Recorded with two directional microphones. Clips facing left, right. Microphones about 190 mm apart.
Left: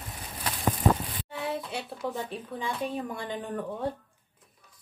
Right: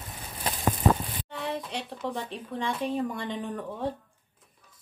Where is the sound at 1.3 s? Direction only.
Centre (ahead or behind).